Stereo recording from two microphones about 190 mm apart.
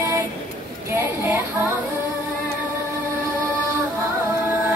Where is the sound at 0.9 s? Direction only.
10° right (ahead or behind).